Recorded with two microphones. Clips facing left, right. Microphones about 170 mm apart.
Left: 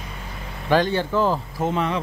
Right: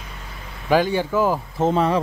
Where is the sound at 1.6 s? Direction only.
35° right (ahead or behind).